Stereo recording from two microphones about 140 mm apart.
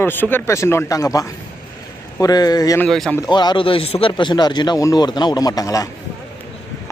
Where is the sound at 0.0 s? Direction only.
15° left (ahead or behind).